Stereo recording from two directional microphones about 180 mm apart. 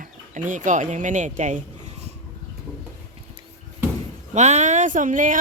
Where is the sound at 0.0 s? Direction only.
45° right (ahead or behind).